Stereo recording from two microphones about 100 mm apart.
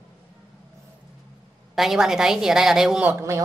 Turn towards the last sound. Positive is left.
turn(degrees=-15)  # may be behind; listen again after turning